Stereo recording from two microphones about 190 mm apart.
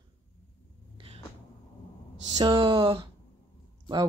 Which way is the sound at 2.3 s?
20° right (ahead or behind).